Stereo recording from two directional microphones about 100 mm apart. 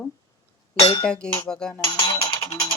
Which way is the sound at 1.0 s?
10° left (ahead or behind).